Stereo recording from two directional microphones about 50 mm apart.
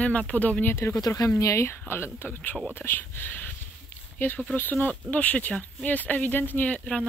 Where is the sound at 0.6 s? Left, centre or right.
Left.